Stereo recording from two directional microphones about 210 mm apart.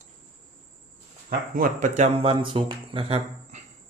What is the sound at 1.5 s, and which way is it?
Speech, 40° right (ahead or behind).